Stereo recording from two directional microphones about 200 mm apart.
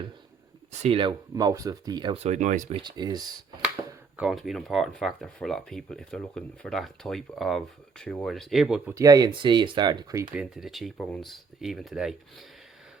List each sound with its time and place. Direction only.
0.7 s speech: 30° right (ahead or behind)
2.2 s speech: 35° right (ahead or behind); by 3.2 s 20° right (ahead or behind)
4.2 s speech: centre (ahead or behind)
9.0 s speech: 15° right (ahead or behind)
10.3 s speech: centre (ahead or behind)